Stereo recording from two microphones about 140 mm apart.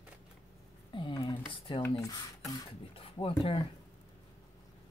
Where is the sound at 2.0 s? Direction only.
25° left (ahead or behind).